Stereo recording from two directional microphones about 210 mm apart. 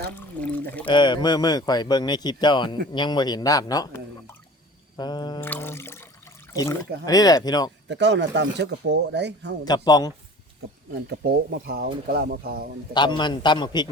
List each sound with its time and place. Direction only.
0.2 s pour: 10° left (ahead or behind)
0.9 s speech: 20° left (ahead or behind)
4.9 s a sound: 20° left (ahead or behind)
5.4 s a sound: 10° left (ahead or behind)
7.0 s speech: 15° left (ahead or behind)
7.9 s speech: 55° right (ahead or behind)
9.6 s speech: 20° left (ahead or behind)
11.1 s speech: 45° right (ahead or behind)
12.9 s speech: 20° left (ahead or behind)